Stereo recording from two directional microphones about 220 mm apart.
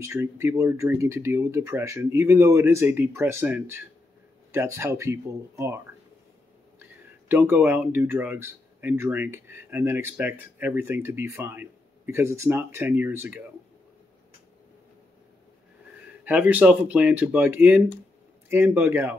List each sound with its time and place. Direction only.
0.0 s speech: 10° right (ahead or behind)
6.8 s speech: 10° right (ahead or behind)
16.3 s speech: 5° right (ahead or behind)